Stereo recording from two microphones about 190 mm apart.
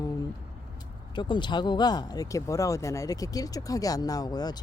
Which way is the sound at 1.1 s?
25° left (ahead or behind).